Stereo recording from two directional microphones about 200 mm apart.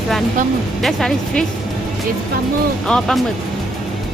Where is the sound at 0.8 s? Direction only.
Centre (ahead or behind).